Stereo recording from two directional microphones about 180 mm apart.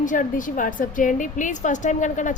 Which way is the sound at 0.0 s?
45° left (ahead or behind).